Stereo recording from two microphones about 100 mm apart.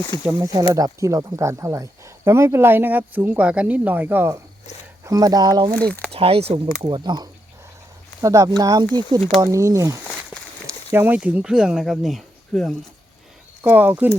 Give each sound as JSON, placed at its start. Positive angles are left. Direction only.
{"t": 0.3, "sound": "speech", "side_deg": -30}
{"t": 5.0, "sound": "speech", "side_deg": -35}
{"t": 5.7, "sound": "speech", "side_deg": 15}
{"t": 6.1, "sound": "speech", "side_deg": -75}
{"t": 6.8, "sound": "speech", "side_deg": -45}
{"t": 8.2, "sound": "speech", "side_deg": -35}
{"t": 10.9, "sound": "speech", "side_deg": -20}
{"t": 13.7, "sound": "speech", "side_deg": -15}